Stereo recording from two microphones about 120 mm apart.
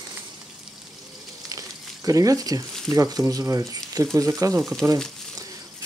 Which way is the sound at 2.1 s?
30° right (ahead or behind).